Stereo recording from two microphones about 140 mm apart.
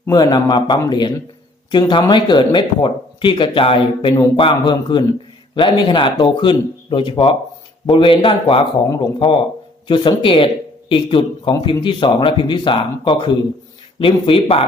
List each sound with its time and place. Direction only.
0.1 s a man's voice: 30° left (ahead or behind)